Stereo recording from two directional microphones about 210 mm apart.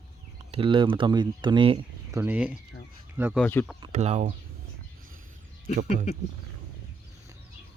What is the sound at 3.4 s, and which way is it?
Speech, 5° left (ahead or behind).